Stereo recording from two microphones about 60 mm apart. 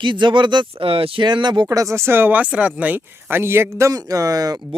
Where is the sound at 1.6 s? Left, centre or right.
Right.